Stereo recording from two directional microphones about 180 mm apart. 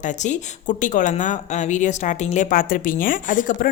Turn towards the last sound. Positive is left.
turn(degrees=50)  # may be behind; listen again after turning